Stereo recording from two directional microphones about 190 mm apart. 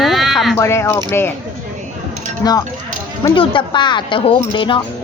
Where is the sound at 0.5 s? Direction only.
15° left (ahead or behind).